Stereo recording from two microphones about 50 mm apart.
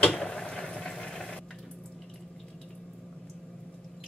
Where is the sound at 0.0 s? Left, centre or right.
Centre.